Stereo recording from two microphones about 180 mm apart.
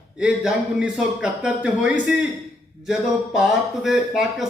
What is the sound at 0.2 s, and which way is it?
A man's voice, 5° right (ahead or behind).